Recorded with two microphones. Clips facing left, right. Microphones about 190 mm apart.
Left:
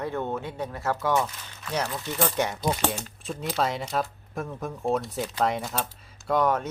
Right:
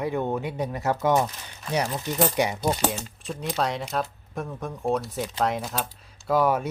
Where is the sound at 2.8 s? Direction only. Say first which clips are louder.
Right 1 dB; centre (ahead or behind).